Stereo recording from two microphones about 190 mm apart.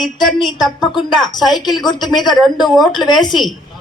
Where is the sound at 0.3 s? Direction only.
25° left (ahead or behind).